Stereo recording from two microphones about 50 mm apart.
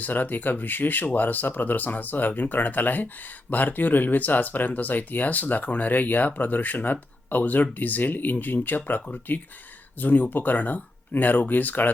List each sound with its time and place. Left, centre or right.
0.0 s speech: left
10.0 s speech: left